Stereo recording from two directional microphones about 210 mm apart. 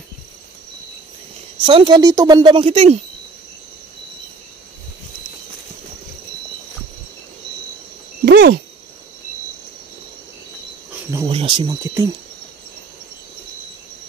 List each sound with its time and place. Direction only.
1.7 s speech: 25° right (ahead or behind)
8.3 s a sound: 50° right (ahead or behind)
11.2 s speech: 25° right (ahead or behind)